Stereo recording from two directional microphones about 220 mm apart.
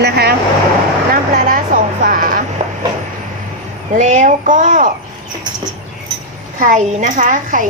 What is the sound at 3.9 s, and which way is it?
Speech, 35° right (ahead or behind).